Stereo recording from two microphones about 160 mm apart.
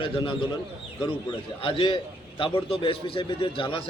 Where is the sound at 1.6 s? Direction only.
35° left (ahead or behind).